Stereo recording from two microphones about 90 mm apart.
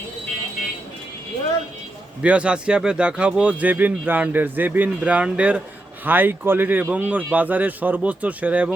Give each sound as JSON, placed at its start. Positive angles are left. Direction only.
{"t": 2.2, "sound": "speech", "side_deg": -15}